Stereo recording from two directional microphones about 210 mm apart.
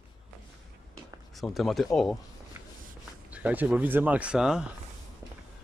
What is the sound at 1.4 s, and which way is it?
Speech, centre (ahead or behind).